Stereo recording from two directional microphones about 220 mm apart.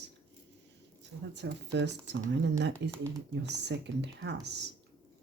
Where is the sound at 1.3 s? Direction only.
50° right (ahead or behind).